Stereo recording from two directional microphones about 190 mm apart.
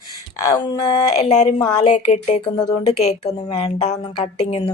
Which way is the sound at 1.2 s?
35° left (ahead or behind).